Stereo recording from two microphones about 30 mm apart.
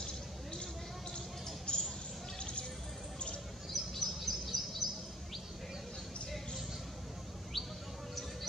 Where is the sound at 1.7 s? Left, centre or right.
Left.